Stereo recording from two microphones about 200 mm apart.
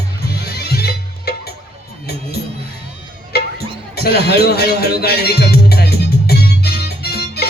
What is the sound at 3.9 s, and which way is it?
Music, 50° left (ahead or behind).